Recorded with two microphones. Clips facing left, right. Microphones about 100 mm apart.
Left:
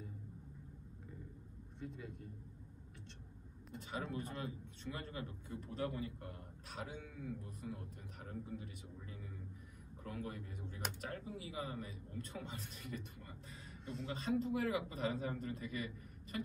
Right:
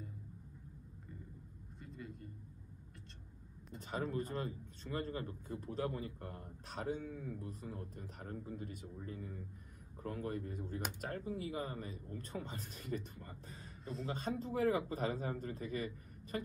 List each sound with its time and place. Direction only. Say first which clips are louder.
1.8 s speech: left 2 dB; centre (ahead or behind)
3.8 s a man's voice: right 4 dB; 40° right (ahead or behind)